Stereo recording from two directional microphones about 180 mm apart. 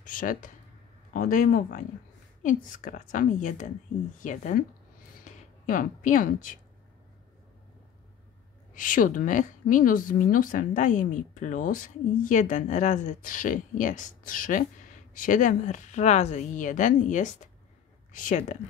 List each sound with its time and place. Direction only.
0.0 s speech: 50° left (ahead or behind)
8.7 s speech: 45° left (ahead or behind)